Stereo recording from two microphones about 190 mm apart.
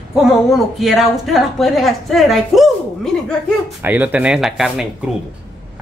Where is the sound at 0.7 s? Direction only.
Centre (ahead or behind).